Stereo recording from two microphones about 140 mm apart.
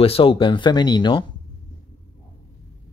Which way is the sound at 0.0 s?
40° left (ahead or behind).